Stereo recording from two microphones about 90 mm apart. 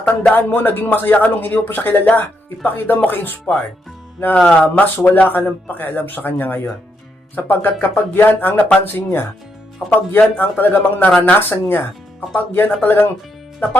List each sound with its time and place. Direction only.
0.3 s speech: 20° left (ahead or behind)